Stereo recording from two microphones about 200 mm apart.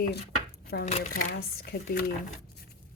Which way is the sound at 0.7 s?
55° left (ahead or behind).